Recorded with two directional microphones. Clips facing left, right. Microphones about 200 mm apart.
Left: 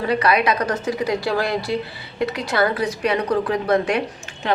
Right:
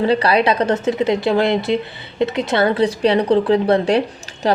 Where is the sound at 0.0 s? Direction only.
30° right (ahead or behind).